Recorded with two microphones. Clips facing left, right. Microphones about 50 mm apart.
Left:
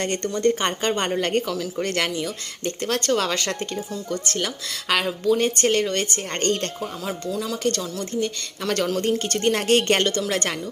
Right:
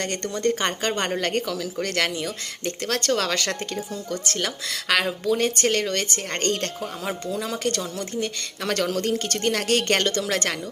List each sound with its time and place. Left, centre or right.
0.0 s a woman's voice: centre
2.8 s a woman's voice: centre
4.1 s a woman's voice: centre
5.6 s a woman's voice: centre
7.0 s a woman's voice: centre
9.5 s a woman's voice: left
10.0 s a woman's voice: centre